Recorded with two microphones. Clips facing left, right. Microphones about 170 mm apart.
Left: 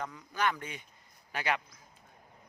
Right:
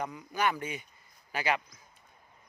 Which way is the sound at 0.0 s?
10° right (ahead or behind).